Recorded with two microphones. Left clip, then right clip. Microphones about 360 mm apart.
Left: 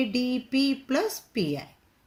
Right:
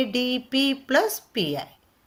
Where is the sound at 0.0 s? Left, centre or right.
Right.